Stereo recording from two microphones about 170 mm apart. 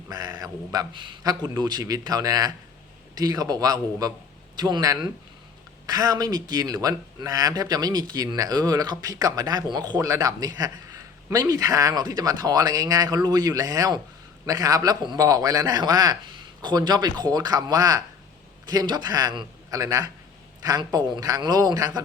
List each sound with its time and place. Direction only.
0.1 s speech: 20° right (ahead or behind)